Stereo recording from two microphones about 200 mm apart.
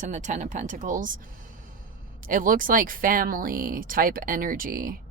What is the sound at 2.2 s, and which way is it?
Speech, 45° right (ahead or behind).